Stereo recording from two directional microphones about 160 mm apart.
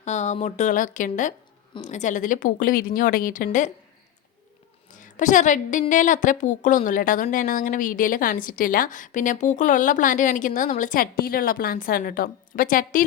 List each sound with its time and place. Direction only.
0.0 s speech: 45° left (ahead or behind)
4.9 s a woman's voice: 50° left (ahead or behind)